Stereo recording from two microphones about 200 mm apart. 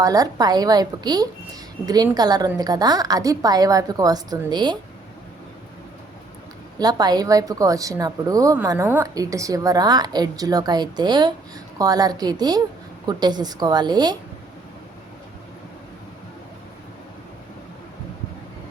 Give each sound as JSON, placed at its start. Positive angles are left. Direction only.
{"t": 0.0, "sound": "a woman's voice", "side_deg": -15}
{"t": 6.7, "sound": "a woman's voice", "side_deg": -20}